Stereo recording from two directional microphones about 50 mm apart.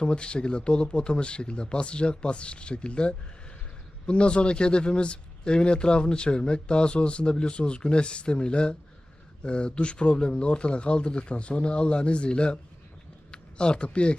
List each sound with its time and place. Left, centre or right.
0.0 s speech: left